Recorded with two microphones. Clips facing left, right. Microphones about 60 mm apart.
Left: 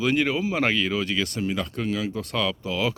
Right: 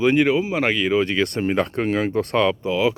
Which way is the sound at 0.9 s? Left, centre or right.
Right.